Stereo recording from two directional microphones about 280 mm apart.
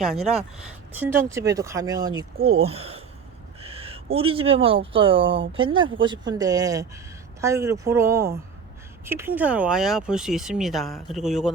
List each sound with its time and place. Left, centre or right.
0.0 s speech: centre